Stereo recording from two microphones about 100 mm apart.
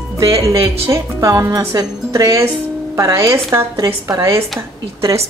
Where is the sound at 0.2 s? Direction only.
35° right (ahead or behind).